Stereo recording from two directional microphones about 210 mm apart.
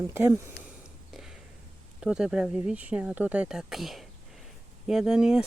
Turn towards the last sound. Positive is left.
turn(degrees=-5)  # may be behind; listen again after turning